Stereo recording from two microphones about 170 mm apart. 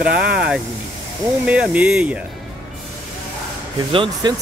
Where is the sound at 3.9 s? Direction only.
25° right (ahead or behind).